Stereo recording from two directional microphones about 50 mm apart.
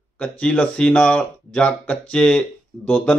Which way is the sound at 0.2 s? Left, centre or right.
Left.